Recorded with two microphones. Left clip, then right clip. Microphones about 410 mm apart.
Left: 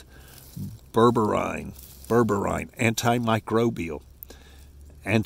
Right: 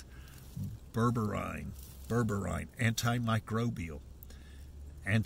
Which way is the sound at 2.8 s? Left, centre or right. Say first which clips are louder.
Left 10 dB; centre.